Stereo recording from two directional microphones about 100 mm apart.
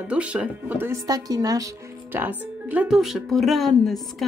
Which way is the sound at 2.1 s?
20° right (ahead or behind).